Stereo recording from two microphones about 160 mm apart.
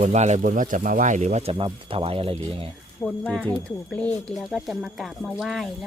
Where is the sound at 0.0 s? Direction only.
45° right (ahead or behind).